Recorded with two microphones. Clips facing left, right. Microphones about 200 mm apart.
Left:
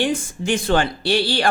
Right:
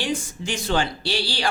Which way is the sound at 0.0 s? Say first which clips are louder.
Left 5 dB; 55° left (ahead or behind).